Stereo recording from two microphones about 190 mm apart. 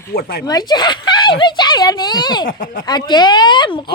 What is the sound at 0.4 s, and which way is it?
Speech, 20° left (ahead or behind).